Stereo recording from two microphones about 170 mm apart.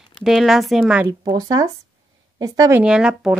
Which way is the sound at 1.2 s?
20° right (ahead or behind).